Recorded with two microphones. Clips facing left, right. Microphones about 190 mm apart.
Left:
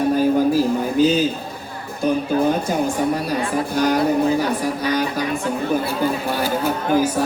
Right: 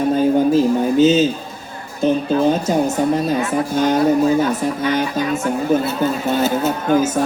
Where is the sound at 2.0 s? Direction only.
25° right (ahead or behind).